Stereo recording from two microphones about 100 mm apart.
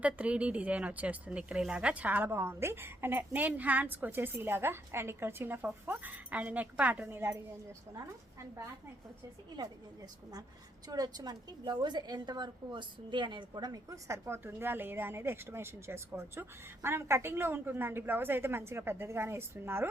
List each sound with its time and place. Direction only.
0.0 s a woman's voice: 15° right (ahead or behind)
7.2 s a woman's voice: 25° right (ahead or behind)
10.8 s a woman's voice: 40° right (ahead or behind); by 19.9 s 25° right (ahead or behind)